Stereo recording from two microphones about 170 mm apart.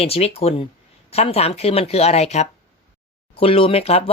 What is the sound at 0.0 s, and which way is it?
Speech, 35° left (ahead or behind).